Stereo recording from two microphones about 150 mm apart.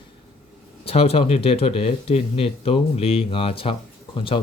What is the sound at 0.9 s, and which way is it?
Speech, 40° left (ahead or behind).